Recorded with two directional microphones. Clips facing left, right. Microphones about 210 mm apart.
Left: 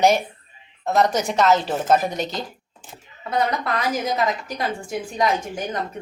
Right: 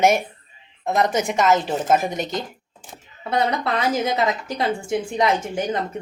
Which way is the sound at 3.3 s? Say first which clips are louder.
Right 1 dB; 25° right (ahead or behind).